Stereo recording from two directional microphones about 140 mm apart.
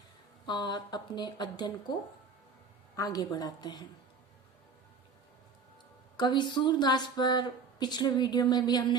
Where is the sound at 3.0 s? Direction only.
30° left (ahead or behind).